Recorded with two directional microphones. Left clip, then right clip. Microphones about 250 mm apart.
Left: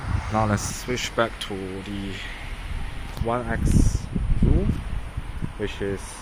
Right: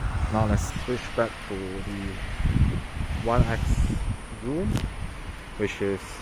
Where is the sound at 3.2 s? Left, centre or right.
Centre.